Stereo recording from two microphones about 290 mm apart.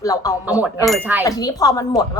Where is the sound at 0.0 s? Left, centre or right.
Centre.